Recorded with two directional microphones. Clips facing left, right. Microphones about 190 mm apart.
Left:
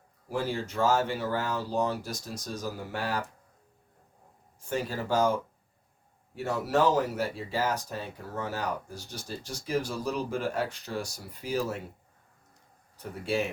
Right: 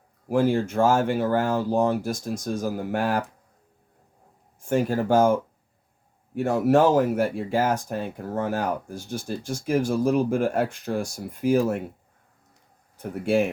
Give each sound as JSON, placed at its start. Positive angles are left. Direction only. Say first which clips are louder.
{"t": 0.3, "sound": "speech", "louder": "right 10 dB", "side_deg": -50}
{"t": 4.7, "sound": "speech", "louder": "right 8 dB", "side_deg": -50}
{"t": 13.0, "sound": "speech", "louder": "right 8 dB", "side_deg": -50}